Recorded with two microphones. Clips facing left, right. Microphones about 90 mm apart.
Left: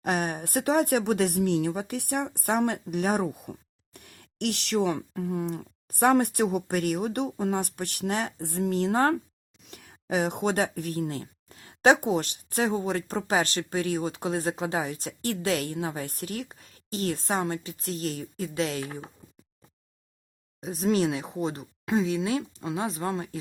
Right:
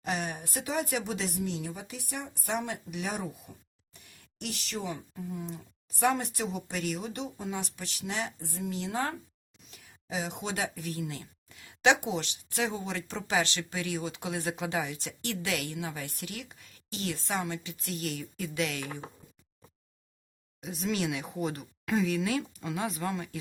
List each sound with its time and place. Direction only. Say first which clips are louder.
0.0 s speech: left 6 dB; 55° left (ahead or behind); by 19.0 s 35° left (ahead or behind)
20.6 s speech: left 7 dB; 40° left (ahead or behind)